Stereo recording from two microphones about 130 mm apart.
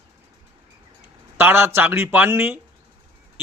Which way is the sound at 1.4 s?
20° right (ahead or behind).